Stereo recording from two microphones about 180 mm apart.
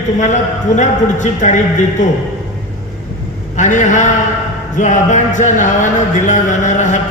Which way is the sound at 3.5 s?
45° left (ahead or behind).